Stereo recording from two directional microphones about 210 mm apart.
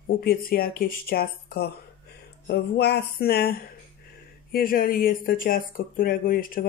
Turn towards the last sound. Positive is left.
turn(degrees=40)  # may be behind; listen again after turning